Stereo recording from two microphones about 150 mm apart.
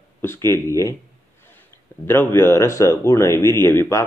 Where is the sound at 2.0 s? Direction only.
15° left (ahead or behind).